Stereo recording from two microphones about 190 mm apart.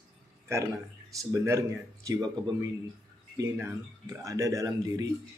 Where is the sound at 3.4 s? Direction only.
15° right (ahead or behind).